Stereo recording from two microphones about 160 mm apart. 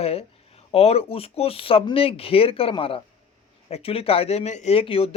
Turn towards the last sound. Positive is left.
turn(degrees=35)  # may be behind; listen again after turning